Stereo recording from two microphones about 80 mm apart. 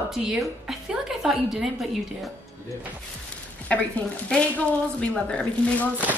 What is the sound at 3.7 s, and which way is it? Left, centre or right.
A woman's voice, centre.